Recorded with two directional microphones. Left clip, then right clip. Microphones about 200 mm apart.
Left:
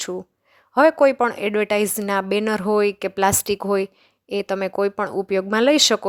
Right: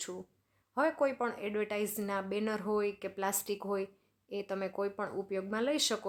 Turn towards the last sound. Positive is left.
turn(degrees=40)  # may be behind; listen again after turning